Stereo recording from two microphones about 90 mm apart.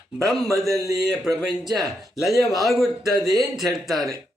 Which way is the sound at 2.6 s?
Centre (ahead or behind).